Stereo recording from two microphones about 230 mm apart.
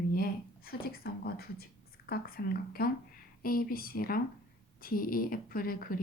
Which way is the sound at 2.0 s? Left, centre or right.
Left.